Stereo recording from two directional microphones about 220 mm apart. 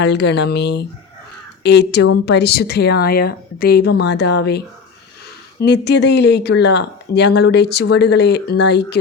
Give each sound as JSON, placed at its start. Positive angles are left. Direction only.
{"t": 0.0, "sound": "speech", "side_deg": 50}